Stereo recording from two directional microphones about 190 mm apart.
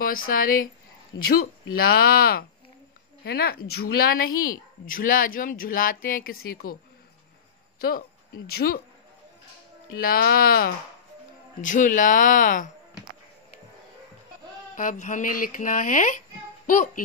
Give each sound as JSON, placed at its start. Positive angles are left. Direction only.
{"t": 0.3, "sound": "speech", "side_deg": 45}
{"t": 8.5, "sound": "speech", "side_deg": 55}
{"t": 9.9, "sound": "speech", "side_deg": 50}
{"t": 14.8, "sound": "speech", "side_deg": 45}